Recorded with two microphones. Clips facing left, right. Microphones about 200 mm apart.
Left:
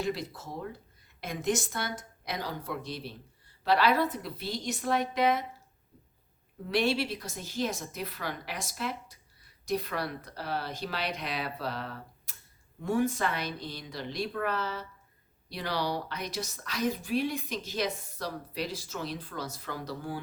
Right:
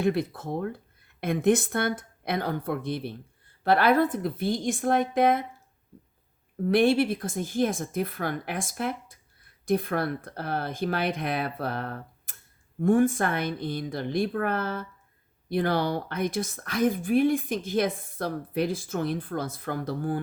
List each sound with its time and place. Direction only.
0.0 s speech: 55° right (ahead or behind)
6.7 s a woman's voice: 50° right (ahead or behind)